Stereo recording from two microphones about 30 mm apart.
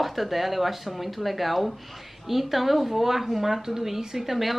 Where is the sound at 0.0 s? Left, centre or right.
Centre.